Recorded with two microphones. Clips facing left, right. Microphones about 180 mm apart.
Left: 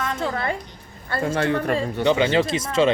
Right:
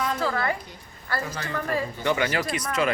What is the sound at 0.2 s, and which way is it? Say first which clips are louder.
Speech: left 1 dB; 25° left (ahead or behind).